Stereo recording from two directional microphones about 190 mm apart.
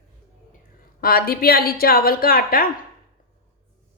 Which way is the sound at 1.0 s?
50° left (ahead or behind).